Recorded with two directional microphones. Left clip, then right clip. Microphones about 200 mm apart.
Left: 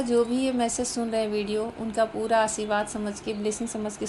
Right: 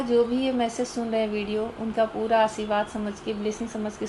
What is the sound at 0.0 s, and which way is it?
A woman's voice, 25° left (ahead or behind).